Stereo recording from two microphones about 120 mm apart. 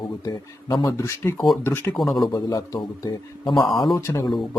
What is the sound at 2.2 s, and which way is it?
Speech, 30° left (ahead or behind).